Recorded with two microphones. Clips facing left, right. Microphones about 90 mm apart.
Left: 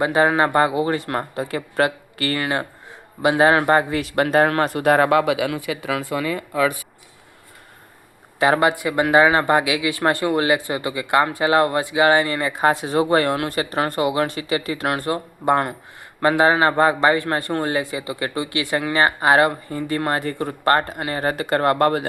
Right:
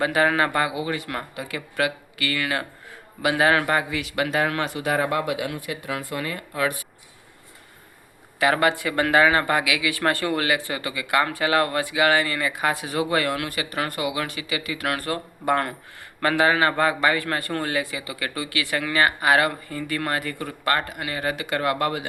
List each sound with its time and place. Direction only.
0.0 s speech: 25° left (ahead or behind); by 5.0 s 55° left (ahead or behind)
5.0 s speech: 90° left
8.4 s speech: 25° left (ahead or behind); by 22.0 s 45° left (ahead or behind)